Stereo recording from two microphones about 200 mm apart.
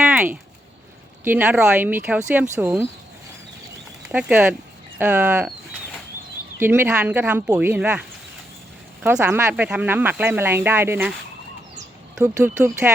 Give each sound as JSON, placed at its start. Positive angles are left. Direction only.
{"t": 0.0, "sound": "a sound", "side_deg": -10}
{"t": 1.2, "sound": "speech", "side_deg": -10}
{"t": 4.1, "sound": "speech", "side_deg": -10}
{"t": 6.6, "sound": "speech", "side_deg": -10}
{"t": 9.0, "sound": "speech", "side_deg": -10}
{"t": 12.1, "sound": "speech", "side_deg": -10}